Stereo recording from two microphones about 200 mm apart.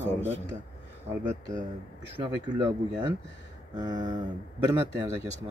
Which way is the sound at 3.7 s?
20° right (ahead or behind).